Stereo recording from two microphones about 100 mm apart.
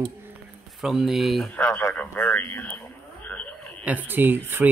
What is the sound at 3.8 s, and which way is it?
Speech, 15° right (ahead or behind).